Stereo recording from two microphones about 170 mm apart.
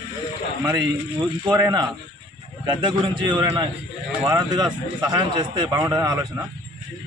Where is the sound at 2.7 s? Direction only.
30° right (ahead or behind).